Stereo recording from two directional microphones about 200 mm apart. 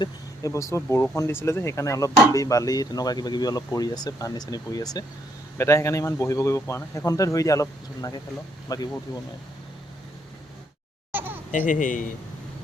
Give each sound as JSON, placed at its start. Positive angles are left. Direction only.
{"t": 0.0, "sound": "speech", "side_deg": 15}
{"t": 11.1, "sound": "a sound", "side_deg": -10}
{"t": 11.5, "sound": "speech", "side_deg": 40}